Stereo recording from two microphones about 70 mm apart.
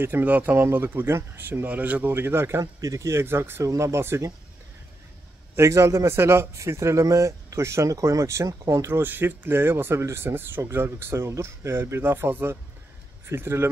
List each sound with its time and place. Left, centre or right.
0.0 s speech: right
1.7 s speech: right
2.1 s speech: right
2.6 s speech: right
3.6 s a man's voice: right
5.6 s a man's voice: right
9.0 s speech: right